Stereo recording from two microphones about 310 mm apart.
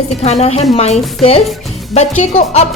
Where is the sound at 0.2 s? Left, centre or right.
Left.